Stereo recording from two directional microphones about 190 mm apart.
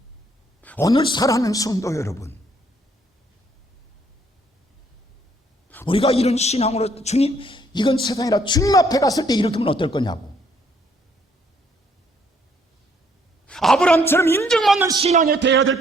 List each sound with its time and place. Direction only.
0.6 s a sound: 10° left (ahead or behind)
0.9 s a man's voice: 20° left (ahead or behind)
5.8 s a man's voice: 30° left (ahead or behind)
13.5 s speech: centre (ahead or behind)
15.0 s a man's voice: 35° right (ahead or behind)
15.3 s speech: 70° right (ahead or behind)